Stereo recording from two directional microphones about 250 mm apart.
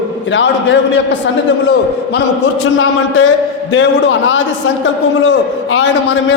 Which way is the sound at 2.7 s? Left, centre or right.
Left.